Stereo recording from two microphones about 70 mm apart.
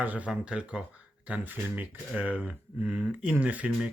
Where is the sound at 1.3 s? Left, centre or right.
Right.